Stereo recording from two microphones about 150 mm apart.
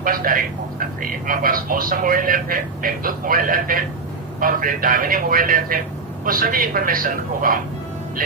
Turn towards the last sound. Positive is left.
turn(degrees=-70)  # may be behind; listen again after turning